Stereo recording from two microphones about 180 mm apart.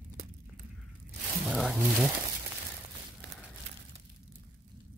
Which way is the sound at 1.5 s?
5° right (ahead or behind).